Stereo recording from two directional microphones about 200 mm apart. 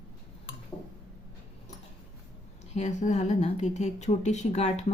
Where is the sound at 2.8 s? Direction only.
35° left (ahead or behind).